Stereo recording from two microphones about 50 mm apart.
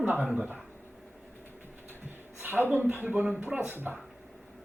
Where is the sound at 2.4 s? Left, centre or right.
Right.